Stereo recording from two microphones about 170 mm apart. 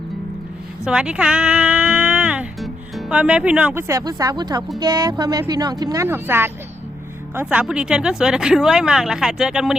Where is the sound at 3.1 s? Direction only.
5° right (ahead or behind).